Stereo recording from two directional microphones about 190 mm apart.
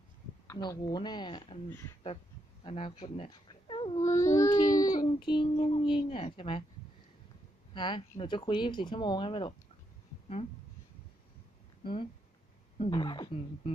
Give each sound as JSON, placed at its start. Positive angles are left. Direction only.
{"t": 0.5, "sound": "child singing", "side_deg": 20}
{"t": 2.6, "sound": "speech", "side_deg": 30}
{"t": 4.0, "sound": "child singing", "side_deg": 15}
{"t": 7.7, "sound": "child singing", "side_deg": 25}
{"t": 11.8, "sound": "speech", "side_deg": 25}
{"t": 12.7, "sound": "child singing", "side_deg": 30}